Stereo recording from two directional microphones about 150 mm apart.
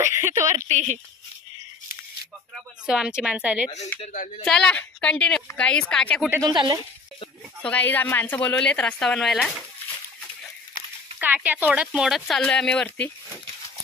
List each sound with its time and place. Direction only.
0.0 s speech: 20° right (ahead or behind)
0.7 s speech: 50° right (ahead or behind)
2.9 s speech: 5° right (ahead or behind)
4.5 s speech: 5° left (ahead or behind)
6.4 s speech: 30° right (ahead or behind)
7.6 s speech: 10° left (ahead or behind)
11.1 s speech: 10° right (ahead or behind); by 13.1 s 10° left (ahead or behind)